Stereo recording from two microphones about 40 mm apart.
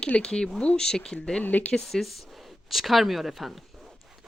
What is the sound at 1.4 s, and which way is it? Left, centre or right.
Speech, left.